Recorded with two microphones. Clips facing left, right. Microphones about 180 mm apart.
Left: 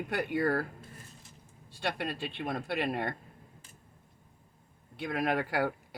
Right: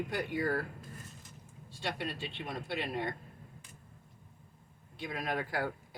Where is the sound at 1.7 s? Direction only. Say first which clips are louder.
Left 3 dB; 60° left (ahead or behind).